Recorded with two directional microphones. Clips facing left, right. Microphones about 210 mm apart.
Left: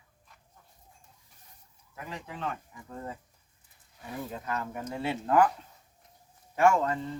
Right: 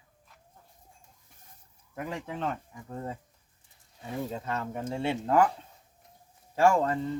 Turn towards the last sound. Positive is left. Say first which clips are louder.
# right 1 dB
turn(degrees=-30)  # may be behind; listen again after turning